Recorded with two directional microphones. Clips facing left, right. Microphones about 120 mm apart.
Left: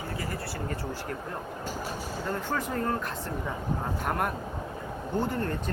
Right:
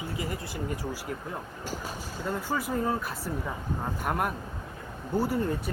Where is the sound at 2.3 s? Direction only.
10° right (ahead or behind).